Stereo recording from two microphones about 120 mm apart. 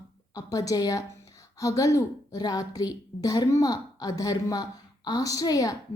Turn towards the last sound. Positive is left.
turn(degrees=30)  # may be behind; listen again after turning